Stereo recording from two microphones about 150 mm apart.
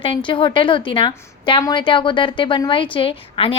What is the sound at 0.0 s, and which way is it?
A woman's voice, 35° left (ahead or behind).